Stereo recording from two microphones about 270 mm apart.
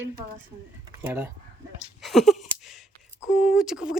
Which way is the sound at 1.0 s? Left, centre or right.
Centre.